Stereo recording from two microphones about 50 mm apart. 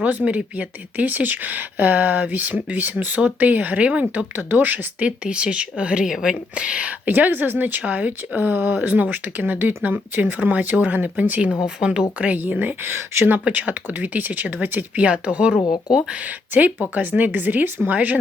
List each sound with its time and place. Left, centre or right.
0.0 s speech: right
3.8 s speech: right
4.4 s speech: right
5.0 s speech: right
7.0 s speech: right
7.8 s speech: right
8.4 s speech: right
11.6 s speech: centre
12.2 s speech: right
13.3 s speech: right
14.9 s speech: right
16.9 s speech: right